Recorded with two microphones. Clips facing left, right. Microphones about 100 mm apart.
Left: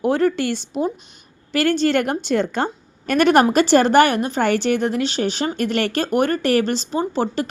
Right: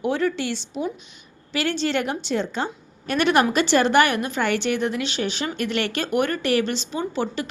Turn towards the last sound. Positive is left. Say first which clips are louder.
# left 4 dB
turn(degrees=40)  # may be behind; listen again after turning